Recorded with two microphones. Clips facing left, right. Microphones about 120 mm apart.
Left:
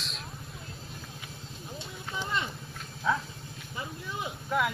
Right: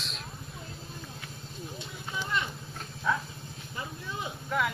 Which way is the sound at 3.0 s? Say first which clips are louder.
Left 1 dB; 10° left (ahead or behind).